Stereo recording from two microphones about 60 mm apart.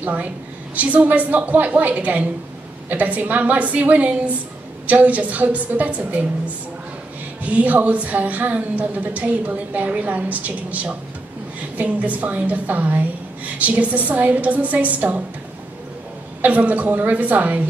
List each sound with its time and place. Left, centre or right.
0.0 s a woman's voice: right
7.4 s a woman's voice: right
16.3 s a woman's voice: right